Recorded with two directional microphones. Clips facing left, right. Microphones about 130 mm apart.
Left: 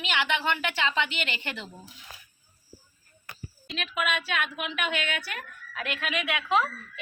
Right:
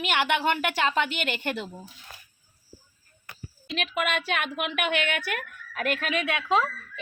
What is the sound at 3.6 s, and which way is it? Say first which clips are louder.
A woman's voice: right 2 dB; 50° right (ahead or behind).